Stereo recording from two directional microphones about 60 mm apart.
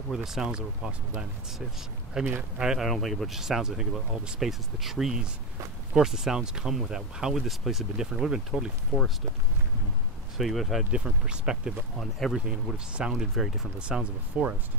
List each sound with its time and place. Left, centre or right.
0.1 s speech: centre
2.2 s speech: right
2.6 s speech: centre
2.9 s speech: centre
8.9 s speech: right
10.3 s speech: centre
10.8 s speech: centre
12.0 s speech: centre
12.7 s speech: centre
13.7 s speech: centre